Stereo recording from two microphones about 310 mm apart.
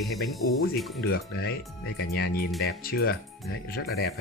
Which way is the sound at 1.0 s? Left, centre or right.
Left.